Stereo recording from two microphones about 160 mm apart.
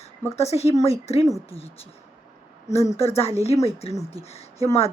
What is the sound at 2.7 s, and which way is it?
A woman's voice, 40° left (ahead or behind).